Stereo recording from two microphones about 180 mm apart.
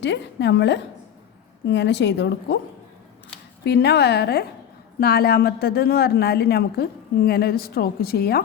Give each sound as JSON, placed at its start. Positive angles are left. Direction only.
{"t": 0.0, "sound": "a woman's voice", "side_deg": 75}
{"t": 3.6, "sound": "a woman's voice", "side_deg": 70}